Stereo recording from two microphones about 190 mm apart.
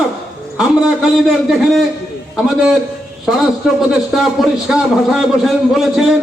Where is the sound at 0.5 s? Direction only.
Centre (ahead or behind).